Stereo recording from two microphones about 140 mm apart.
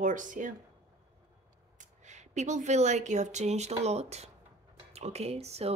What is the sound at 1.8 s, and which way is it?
Speech, 55° right (ahead or behind).